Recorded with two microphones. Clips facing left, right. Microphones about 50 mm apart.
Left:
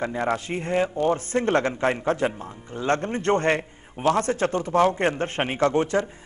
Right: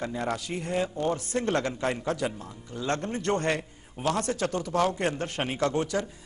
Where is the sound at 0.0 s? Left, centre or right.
Left.